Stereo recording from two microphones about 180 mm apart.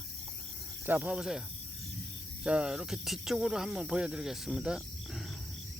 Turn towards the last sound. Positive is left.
turn(degrees=0)  # may be behind; listen again after turning